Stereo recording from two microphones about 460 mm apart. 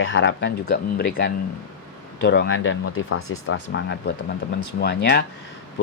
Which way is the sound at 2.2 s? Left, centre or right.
Left.